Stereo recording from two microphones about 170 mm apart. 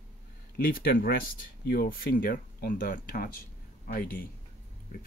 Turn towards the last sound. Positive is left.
turn(degrees=55)  # may be behind; listen again after turning